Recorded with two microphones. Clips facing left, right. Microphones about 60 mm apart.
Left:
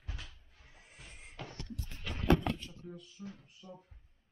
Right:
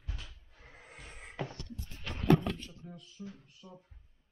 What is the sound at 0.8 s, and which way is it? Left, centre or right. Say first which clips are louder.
Music: right 4 dB; right.